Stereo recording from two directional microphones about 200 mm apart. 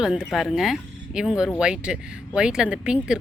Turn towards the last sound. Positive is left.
turn(degrees=-5)  # may be behind; listen again after turning